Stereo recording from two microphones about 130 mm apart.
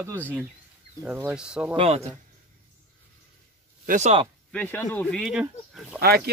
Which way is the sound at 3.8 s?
70° right (ahead or behind).